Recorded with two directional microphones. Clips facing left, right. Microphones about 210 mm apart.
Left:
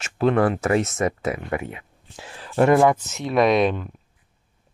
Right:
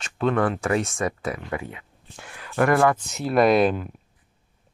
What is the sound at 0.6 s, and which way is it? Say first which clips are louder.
Speech: left 3 dB; 25° left (ahead or behind).